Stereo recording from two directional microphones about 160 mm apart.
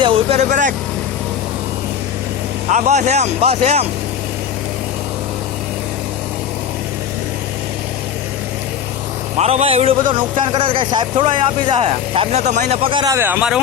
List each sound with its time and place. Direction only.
0.0 s speech: 35° right (ahead or behind)
2.6 s speech: 45° right (ahead or behind)
9.4 s speech: 40° right (ahead or behind)
13.1 s speech: 15° right (ahead or behind)